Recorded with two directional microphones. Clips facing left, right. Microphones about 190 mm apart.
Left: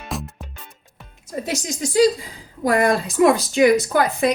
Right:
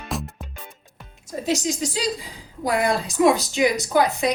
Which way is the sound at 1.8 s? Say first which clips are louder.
Left 9 dB; 55° left (ahead or behind).